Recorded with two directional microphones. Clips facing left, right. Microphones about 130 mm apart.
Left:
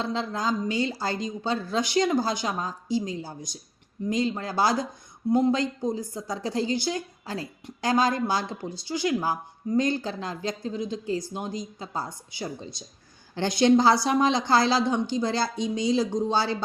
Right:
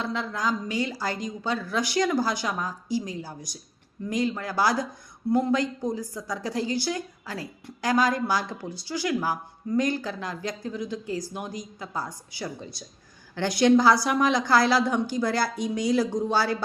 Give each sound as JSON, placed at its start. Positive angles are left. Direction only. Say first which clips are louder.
{"t": 0.0, "sound": "a woman's voice", "louder": "left 1 dB", "side_deg": 30}